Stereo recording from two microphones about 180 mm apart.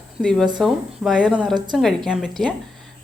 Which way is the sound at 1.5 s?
25° right (ahead or behind).